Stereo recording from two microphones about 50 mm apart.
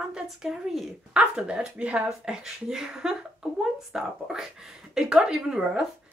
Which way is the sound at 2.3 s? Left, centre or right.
Centre.